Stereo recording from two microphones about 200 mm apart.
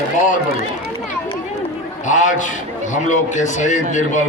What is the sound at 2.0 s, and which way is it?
A man's voice, 40° left (ahead or behind).